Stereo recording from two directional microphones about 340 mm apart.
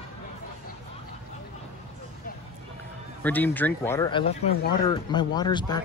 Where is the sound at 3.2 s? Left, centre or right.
Centre.